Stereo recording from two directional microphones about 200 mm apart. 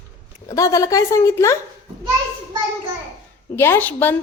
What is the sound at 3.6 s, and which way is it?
Speech, 10° left (ahead or behind).